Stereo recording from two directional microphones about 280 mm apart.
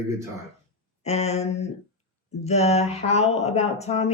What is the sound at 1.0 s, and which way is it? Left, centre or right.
Speech, left.